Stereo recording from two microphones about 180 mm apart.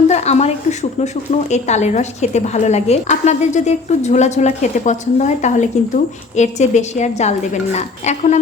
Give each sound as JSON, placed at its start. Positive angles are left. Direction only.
{"t": 0.1, "sound": "a woman's voice", "side_deg": 40}